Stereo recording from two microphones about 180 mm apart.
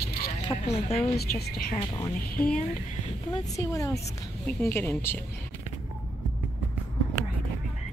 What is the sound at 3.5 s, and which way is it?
Speech, 20° left (ahead or behind).